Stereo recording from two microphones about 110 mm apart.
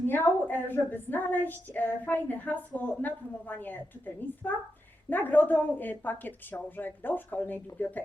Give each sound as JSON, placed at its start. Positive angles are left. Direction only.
{"t": 0.1, "sound": "a woman's voice", "side_deg": 20}